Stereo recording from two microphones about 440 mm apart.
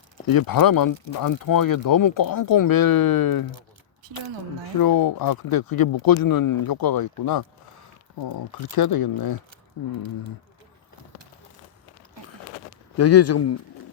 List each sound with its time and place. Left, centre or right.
0.3 s speech: left
4.8 s speech: left
13.0 s speech: left